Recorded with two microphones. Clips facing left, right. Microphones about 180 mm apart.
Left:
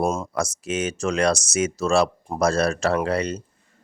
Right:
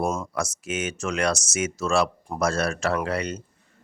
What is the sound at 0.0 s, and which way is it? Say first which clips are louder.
Speech: left 3 dB; 25° left (ahead or behind).